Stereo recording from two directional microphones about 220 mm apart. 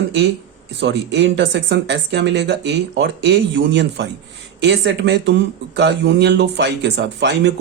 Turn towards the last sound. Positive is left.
turn(degrees=-50)  # may be behind; listen again after turning